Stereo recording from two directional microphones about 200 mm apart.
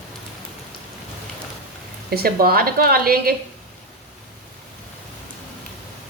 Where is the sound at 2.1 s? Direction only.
50° right (ahead or behind).